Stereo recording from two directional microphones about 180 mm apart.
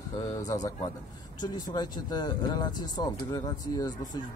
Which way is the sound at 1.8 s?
25° left (ahead or behind).